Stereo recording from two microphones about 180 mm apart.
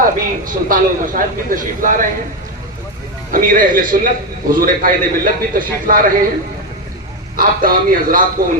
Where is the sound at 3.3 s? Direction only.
50° right (ahead or behind).